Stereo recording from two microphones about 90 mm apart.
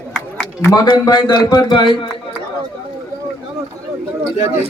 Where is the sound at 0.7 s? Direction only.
50° left (ahead or behind).